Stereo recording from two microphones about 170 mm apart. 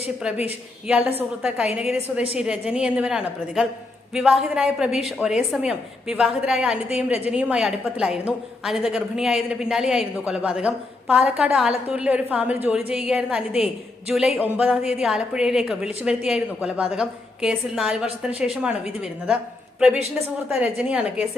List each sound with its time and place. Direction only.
0.2 s a woman's voice: 5° right (ahead or behind)
20.5 s a woman's voice: 5° right (ahead or behind)